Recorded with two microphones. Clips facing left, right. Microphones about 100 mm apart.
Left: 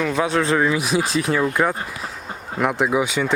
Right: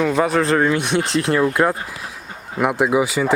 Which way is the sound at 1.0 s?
90° right.